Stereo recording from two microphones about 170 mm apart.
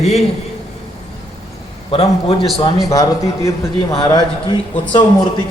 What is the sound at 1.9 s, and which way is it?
Speech, 35° left (ahead or behind).